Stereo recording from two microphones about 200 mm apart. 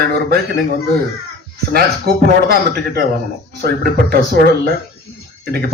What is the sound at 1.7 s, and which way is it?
Speech, 50° right (ahead or behind).